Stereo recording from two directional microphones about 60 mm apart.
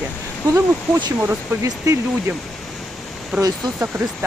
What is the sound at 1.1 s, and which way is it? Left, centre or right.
Speech, right.